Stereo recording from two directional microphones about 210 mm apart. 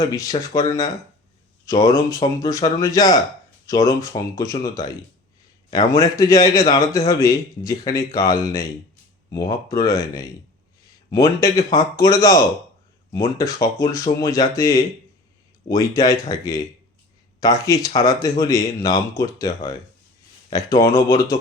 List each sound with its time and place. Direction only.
0.0 s a man's voice: 15° left (ahead or behind)